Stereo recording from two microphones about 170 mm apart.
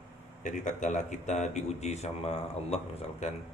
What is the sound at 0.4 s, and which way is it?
Speech, 50° left (ahead or behind).